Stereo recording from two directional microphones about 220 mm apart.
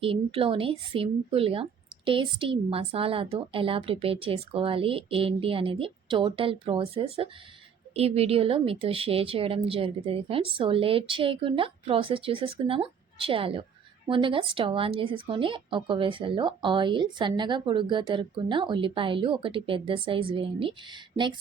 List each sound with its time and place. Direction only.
0.0 s speech: 25° right (ahead or behind)